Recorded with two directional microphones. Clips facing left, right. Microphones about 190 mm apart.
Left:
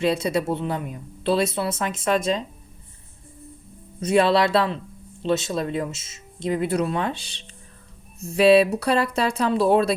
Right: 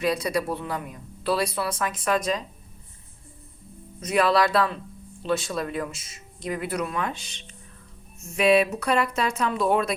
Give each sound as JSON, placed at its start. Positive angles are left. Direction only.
{"t": 0.0, "sound": "speech", "side_deg": 25}
{"t": 4.0, "sound": "speech", "side_deg": 30}